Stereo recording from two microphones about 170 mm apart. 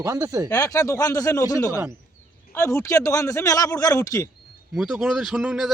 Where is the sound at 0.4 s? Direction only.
20° left (ahead or behind).